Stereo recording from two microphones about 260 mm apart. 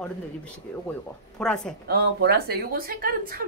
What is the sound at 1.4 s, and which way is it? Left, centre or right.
Speech, centre.